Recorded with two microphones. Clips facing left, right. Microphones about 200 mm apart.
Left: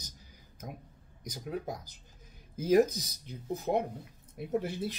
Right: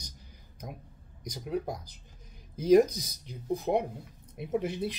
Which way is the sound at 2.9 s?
55° right (ahead or behind).